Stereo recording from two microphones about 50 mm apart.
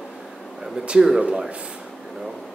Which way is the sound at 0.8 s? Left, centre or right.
Centre.